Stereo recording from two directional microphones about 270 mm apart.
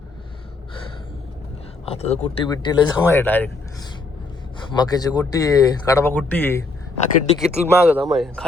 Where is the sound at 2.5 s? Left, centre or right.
Centre.